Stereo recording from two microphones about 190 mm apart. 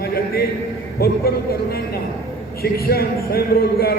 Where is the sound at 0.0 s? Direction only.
55° left (ahead or behind).